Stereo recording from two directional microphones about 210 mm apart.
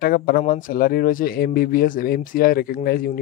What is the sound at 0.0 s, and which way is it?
Speech, 45° left (ahead or behind).